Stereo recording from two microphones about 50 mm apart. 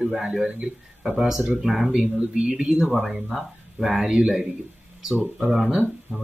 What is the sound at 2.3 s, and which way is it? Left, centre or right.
Speech, centre.